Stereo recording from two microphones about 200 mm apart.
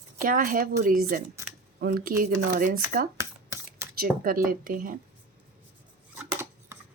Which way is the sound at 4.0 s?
45° right (ahead or behind).